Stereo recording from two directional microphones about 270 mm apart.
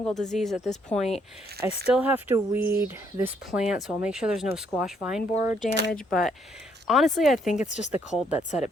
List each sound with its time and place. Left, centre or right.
0.0 s speech: centre
7.5 s speech: left